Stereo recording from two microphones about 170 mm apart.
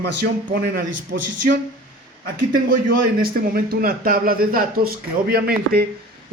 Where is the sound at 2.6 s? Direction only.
55° right (ahead or behind).